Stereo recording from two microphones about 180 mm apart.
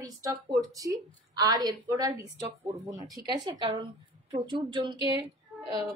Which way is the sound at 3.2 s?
25° right (ahead or behind).